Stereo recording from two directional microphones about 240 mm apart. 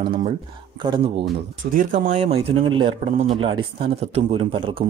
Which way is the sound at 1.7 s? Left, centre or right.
Right.